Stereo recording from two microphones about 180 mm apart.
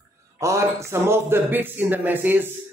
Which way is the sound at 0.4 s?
15° right (ahead or behind).